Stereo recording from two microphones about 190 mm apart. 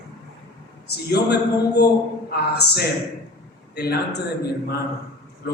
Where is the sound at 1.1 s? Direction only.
60° left (ahead or behind).